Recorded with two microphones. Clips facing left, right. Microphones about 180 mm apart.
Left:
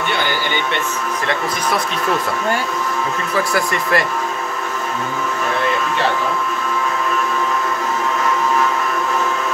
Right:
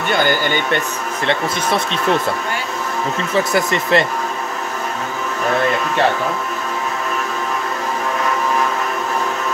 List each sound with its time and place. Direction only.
3.3 s speech: 25° right (ahead or behind)